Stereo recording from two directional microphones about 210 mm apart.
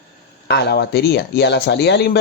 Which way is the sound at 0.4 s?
55° left (ahead or behind).